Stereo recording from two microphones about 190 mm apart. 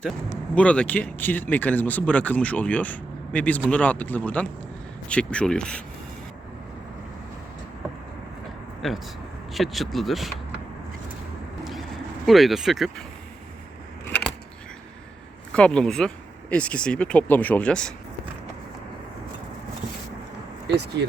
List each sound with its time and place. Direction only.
0.5 s speech: 5° left (ahead or behind)
8.8 s speech: centre (ahead or behind)
12.2 s speech: centre (ahead or behind)
14.1 s a sound: 5° left (ahead or behind)
15.5 s speech: 5° left (ahead or behind)
20.7 s speech: 60° right (ahead or behind)